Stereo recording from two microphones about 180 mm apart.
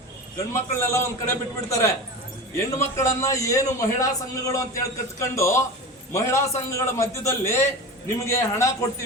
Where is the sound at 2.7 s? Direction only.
15° left (ahead or behind).